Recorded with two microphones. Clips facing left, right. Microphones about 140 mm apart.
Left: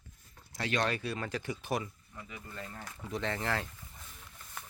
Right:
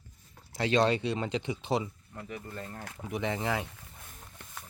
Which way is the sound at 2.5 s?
40° right (ahead or behind).